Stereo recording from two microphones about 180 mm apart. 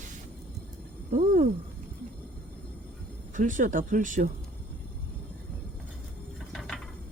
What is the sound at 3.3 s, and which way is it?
Speech, 45° right (ahead or behind).